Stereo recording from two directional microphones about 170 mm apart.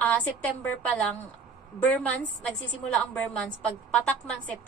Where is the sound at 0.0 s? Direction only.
10° left (ahead or behind).